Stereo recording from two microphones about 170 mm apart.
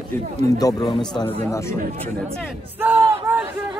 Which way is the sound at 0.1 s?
10° left (ahead or behind).